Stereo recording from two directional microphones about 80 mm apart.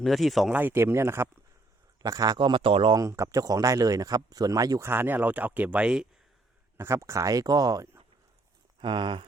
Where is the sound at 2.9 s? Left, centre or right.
Right.